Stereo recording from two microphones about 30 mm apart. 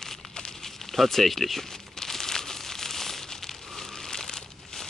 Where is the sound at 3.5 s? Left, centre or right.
Centre.